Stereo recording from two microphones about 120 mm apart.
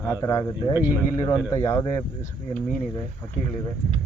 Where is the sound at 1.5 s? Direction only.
25° left (ahead or behind).